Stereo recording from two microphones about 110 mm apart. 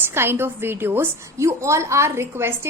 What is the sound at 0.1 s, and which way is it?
A woman's voice, 20° right (ahead or behind).